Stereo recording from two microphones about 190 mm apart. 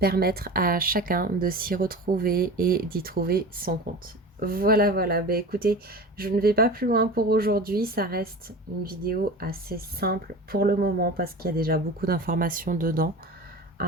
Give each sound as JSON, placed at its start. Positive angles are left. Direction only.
{"t": 0.0, "sound": "speech", "side_deg": -55}